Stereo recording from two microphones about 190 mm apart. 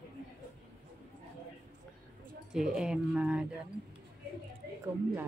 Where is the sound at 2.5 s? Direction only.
5° right (ahead or behind).